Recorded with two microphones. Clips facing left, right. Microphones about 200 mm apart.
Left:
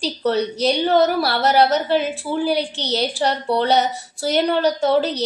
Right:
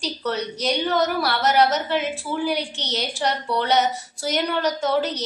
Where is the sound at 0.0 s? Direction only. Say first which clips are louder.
Left 6 dB; 30° left (ahead or behind).